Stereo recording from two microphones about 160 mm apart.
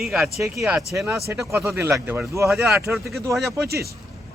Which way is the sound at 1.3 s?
20° right (ahead or behind).